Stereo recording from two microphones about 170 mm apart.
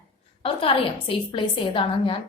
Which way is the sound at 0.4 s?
35° left (ahead or behind).